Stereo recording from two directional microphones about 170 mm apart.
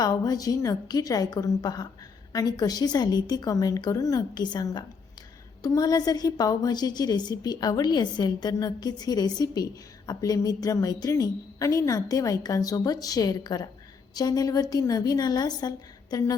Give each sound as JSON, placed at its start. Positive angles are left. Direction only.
{"t": 0.0, "sound": "a woman's voice", "side_deg": 20}